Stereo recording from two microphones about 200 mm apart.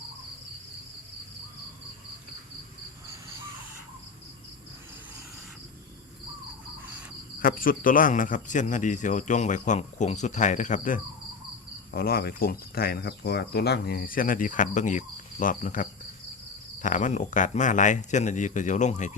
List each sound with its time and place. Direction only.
7.3 s speech: 45° left (ahead or behind)
11.9 s speech: 50° left (ahead or behind)